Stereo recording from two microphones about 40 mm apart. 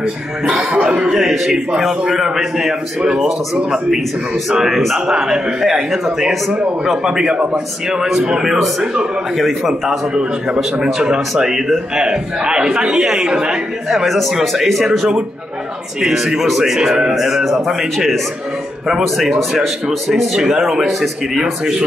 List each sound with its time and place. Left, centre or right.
0.0 s a man's voice: right
1.1 s a man's voice: centre
5.0 s a man's voice: centre
7.1 s a man's voice: right
9.7 s a man's voice: centre
13.8 s speech: centre
16.0 s a man's voice: centre
17.9 s speech: centre
20.3 s a man's voice: centre